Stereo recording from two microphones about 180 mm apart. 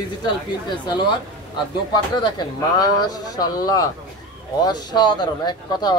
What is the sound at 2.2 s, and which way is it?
Speech, 25° left (ahead or behind).